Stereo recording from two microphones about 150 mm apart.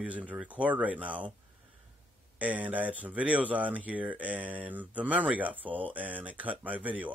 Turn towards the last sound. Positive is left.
turn(degrees=-10)  # may be behind; listen again after turning